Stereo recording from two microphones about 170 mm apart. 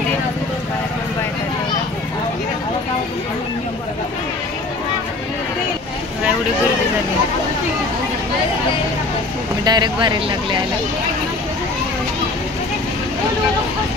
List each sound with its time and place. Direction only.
9.7 s speech: 25° right (ahead or behind)